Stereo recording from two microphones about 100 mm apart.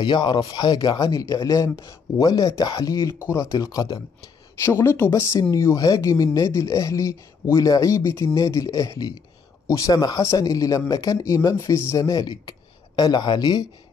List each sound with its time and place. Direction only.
0.0 s speech: 50° left (ahead or behind)
4.6 s speech: 25° left (ahead or behind); by 13.7 s 45° left (ahead or behind)